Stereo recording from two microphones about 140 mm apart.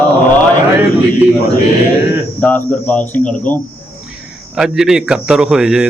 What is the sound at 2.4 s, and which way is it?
Speech, 10° left (ahead or behind).